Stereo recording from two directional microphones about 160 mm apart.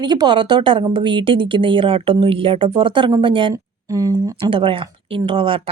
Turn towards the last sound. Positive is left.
turn(degrees=-35)  # may be behind; listen again after turning